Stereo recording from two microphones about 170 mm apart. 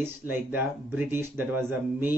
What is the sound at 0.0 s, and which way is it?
Speech, 10° right (ahead or behind).